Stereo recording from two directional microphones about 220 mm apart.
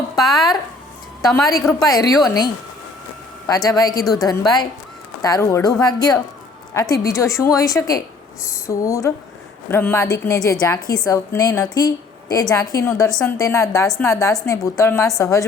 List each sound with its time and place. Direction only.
0.2 s a woman's voice: centre (ahead or behind)
1.2 s a woman's voice: 10° left (ahead or behind)
1.8 s a woman's voice: 15° left (ahead or behind)
3.4 s a woman's voice: 15° left (ahead or behind)
13.1 s a woman's voice: 5° left (ahead or behind)
13.4 s a woman's voice: 15° left (ahead or behind)